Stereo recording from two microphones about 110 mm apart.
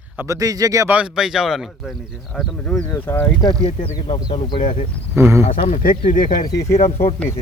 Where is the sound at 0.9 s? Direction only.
10° right (ahead or behind); by 2.8 s 10° left (ahead or behind).